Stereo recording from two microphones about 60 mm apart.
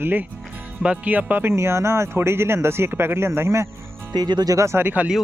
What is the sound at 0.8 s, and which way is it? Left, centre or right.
Speech, right.